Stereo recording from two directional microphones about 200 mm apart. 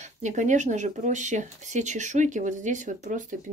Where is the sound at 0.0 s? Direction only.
35° right (ahead or behind).